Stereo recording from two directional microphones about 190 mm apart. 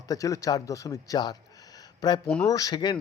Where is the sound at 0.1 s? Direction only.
15° left (ahead or behind).